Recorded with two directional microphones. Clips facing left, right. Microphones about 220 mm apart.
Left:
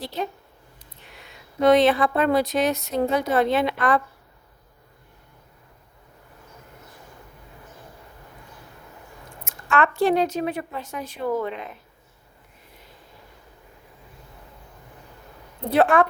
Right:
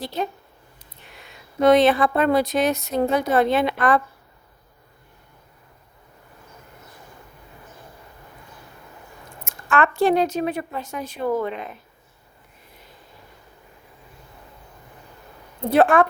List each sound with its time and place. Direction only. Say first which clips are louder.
1.6 s a woman's voice: right 1 dB; 50° right (ahead or behind)
9.4 s a woman's voice: right 1 dB; 50° right (ahead or behind)
15.7 s a woman's voice: right 2 dB; 50° right (ahead or behind)